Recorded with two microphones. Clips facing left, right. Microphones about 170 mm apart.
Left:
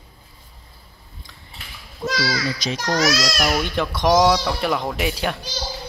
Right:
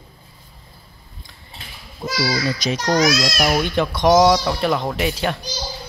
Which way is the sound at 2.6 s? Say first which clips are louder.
Right 4 dB; 10° right (ahead or behind).